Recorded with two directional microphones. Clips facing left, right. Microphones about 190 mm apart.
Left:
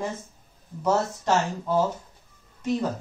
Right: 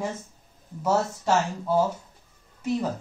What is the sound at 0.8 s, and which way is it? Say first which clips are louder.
Speech: even; 5° right (ahead or behind).